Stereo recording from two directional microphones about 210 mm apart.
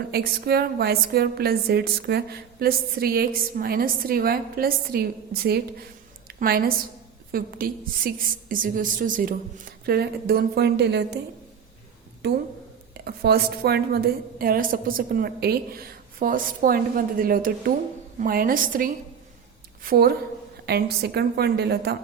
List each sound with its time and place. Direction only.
0.1 s a woman's voice: 50° right (ahead or behind)
6.2 s a sound: 45° right (ahead or behind)
7.3 s a woman's voice: 45° right (ahead or behind)
12.2 s a woman's voice: 50° right (ahead or behind)